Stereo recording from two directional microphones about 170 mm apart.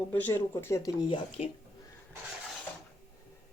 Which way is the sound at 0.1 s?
10° left (ahead or behind).